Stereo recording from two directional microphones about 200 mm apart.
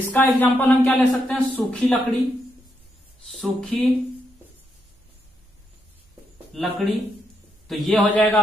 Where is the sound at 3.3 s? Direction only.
Centre (ahead or behind).